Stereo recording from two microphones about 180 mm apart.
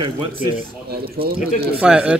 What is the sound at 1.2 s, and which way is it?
Speech, 55° right (ahead or behind).